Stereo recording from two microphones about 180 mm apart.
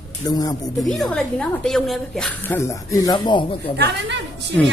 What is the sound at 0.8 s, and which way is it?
A woman's voice, centre (ahead or behind).